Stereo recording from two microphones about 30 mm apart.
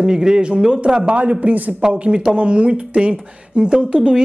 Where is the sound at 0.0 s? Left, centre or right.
Right.